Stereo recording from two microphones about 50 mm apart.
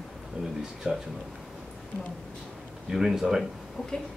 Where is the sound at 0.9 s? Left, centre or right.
Centre.